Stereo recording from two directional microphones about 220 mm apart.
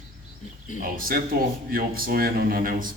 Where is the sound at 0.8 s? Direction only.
40° right (ahead or behind).